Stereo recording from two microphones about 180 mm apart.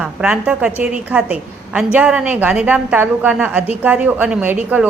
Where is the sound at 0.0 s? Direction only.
5° right (ahead or behind).